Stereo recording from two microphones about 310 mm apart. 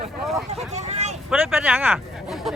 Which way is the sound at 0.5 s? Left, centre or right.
Right.